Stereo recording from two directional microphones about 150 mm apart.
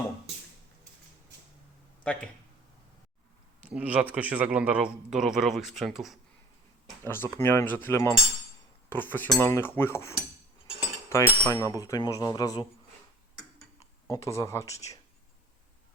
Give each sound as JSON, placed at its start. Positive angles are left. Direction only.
{"t": 2.0, "sound": "speech", "side_deg": 5}
{"t": 3.6, "sound": "a man's voice", "side_deg": -10}
{"t": 7.0, "sound": "cutlery", "side_deg": 15}
{"t": 11.1, "sound": "speech", "side_deg": 20}
{"t": 14.1, "sound": "speech", "side_deg": 20}